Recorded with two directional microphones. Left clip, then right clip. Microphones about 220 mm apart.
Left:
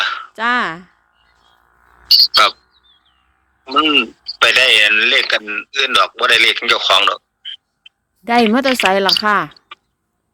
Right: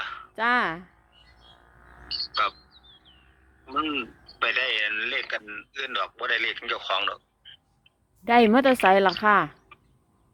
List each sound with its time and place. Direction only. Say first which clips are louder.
0.0 s a sound: left 16 dB; 50° left (ahead or behind)
0.3 s speech: left 5 dB; 30° left (ahead or behind)
2.0 s speech: left 17 dB; 50° left (ahead or behind)
3.7 s speech: left 15 dB; 50° left (ahead or behind)
8.2 s speech: left 5 dB; 30° left (ahead or behind)